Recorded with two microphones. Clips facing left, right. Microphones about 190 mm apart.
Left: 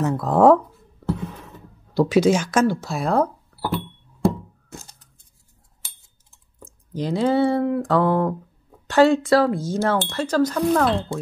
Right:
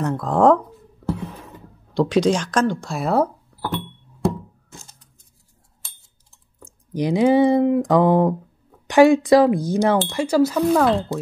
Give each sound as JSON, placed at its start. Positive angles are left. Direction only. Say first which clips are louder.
{"t": 0.0, "sound": "speech", "louder": "left 1 dB", "side_deg": 5}
{"t": 2.0, "sound": "speech", "louder": "left 1 dB", "side_deg": 5}
{"t": 3.5, "sound": "a sound", "louder": "left 2 dB", "side_deg": 10}
{"t": 6.6, "sound": "speech", "louder": "right 4 dB", "side_deg": -15}